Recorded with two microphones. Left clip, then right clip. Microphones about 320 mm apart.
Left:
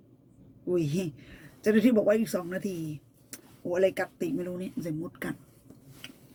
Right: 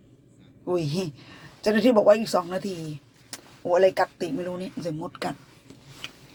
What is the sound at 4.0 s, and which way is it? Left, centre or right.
Speech, right.